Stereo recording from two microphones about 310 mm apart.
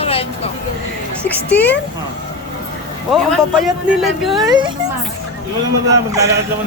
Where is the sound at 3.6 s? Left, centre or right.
Centre.